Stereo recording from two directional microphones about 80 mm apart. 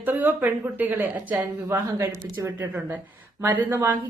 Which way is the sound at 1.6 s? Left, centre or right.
Right.